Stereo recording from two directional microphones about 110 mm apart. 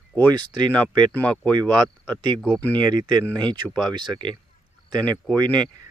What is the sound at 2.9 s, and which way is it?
Speech, 40° right (ahead or behind).